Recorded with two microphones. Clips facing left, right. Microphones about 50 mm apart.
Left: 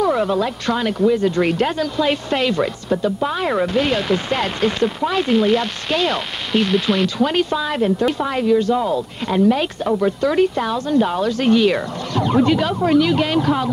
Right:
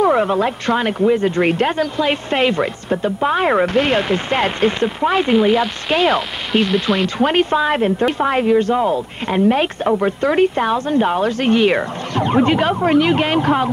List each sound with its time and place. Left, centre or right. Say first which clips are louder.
0.0 s speech: right 3 dB; right
6.1 s speech: right 2 dB; centre
7.2 s speech: right 3 dB; right